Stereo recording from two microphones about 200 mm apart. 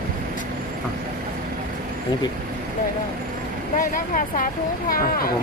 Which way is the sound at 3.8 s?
45° left (ahead or behind).